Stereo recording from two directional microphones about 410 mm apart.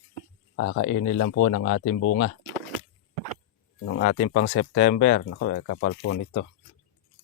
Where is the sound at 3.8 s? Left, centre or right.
Left.